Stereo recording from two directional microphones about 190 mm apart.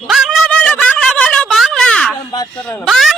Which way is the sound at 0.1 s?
Centre (ahead or behind).